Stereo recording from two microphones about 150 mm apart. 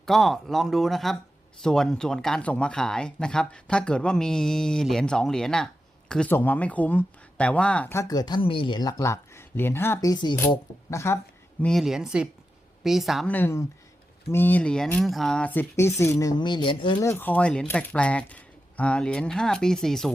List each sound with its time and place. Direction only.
0.0 s speech: centre (ahead or behind)
8.0 s speech: 25° left (ahead or behind)
11.6 s speech: centre (ahead or behind)
13.3 s speech: 15° left (ahead or behind); by 17.0 s 35° left (ahead or behind)
17.0 s speech: 15° left (ahead or behind)